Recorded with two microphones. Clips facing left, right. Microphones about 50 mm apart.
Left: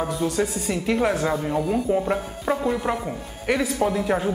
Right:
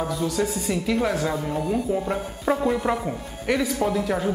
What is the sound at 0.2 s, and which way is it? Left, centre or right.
Speech, centre.